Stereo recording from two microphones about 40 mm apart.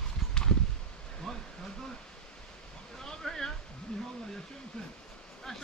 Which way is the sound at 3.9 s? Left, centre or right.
Left.